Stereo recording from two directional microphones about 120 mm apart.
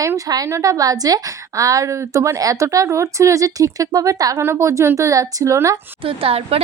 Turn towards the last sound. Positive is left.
turn(degrees=-55)  # may be behind; listen again after turning